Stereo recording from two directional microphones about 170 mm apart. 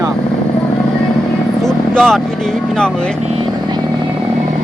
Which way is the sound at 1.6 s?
Centre (ahead or behind).